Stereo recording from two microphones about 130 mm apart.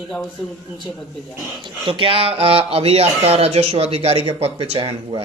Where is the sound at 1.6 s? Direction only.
40° right (ahead or behind).